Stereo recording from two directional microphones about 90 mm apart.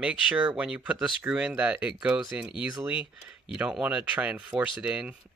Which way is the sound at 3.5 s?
10° right (ahead or behind).